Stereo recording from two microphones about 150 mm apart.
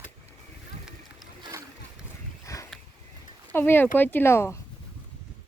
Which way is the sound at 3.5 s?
15° left (ahead or behind).